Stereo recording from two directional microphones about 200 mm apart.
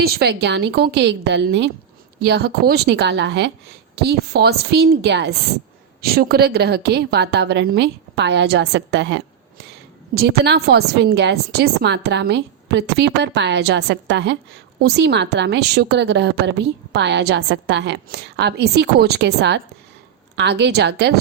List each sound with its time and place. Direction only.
0.0 s a woman's voice: 55° right (ahead or behind)